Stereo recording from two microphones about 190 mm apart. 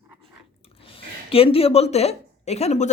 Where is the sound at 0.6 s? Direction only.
30° left (ahead or behind).